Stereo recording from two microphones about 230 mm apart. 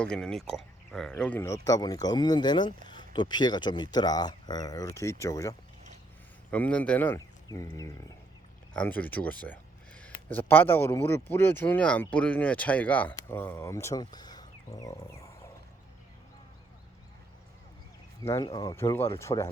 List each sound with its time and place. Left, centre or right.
0.0 s speech: centre
18.2 s speech: centre